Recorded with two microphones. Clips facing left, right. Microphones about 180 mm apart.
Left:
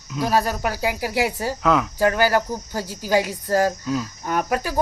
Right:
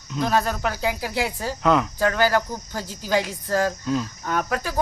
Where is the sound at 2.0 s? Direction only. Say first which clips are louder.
Left 2 dB; 10° left (ahead or behind).